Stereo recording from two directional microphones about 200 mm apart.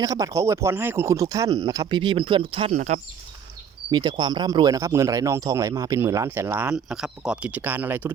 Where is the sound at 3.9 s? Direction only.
20° right (ahead or behind).